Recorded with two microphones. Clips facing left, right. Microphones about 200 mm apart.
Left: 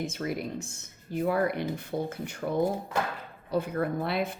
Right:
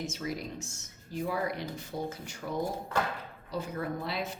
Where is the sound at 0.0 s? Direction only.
55° left (ahead or behind).